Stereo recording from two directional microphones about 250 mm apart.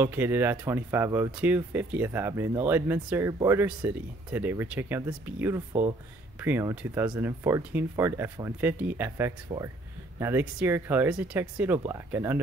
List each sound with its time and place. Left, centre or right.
0.0 s speech: centre
9.5 s speech: centre
10.1 s speech: centre